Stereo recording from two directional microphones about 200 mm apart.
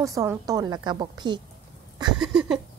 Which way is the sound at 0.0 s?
15° right (ahead or behind).